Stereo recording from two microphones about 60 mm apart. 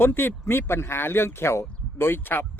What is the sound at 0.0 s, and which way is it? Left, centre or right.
Speech, left.